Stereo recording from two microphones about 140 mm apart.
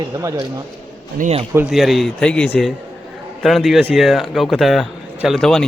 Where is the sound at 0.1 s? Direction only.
20° right (ahead or behind).